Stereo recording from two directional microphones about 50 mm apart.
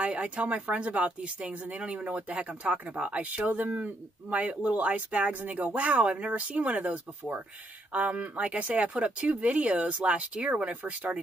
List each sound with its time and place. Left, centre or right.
0.0 s speech: right